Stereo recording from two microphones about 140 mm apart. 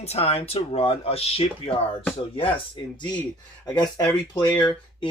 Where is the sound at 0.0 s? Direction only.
45° left (ahead or behind).